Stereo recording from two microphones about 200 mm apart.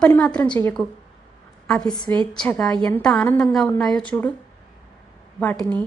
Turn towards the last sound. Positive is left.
turn(degrees=5)  # may be behind; listen again after turning